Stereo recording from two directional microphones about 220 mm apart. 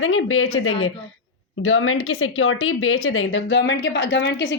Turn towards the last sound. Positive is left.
turn(degrees=55)  # may be behind; listen again after turning